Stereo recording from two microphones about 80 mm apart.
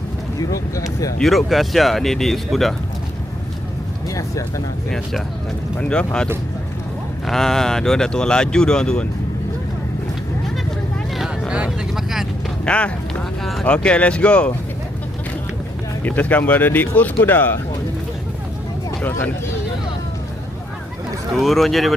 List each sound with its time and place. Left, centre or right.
0.3 s speech: left
1.2 s speech: centre
4.1 s speech: left
5.9 s speech: centre
7.3 s speech: centre
11.1 s vehicle: centre
11.5 s a sound: centre
12.6 s speech: centre
13.4 s speech: centre
13.7 s speech: centre
16.0 s speech: left
19.0 s speech: left
21.3 s speech: centre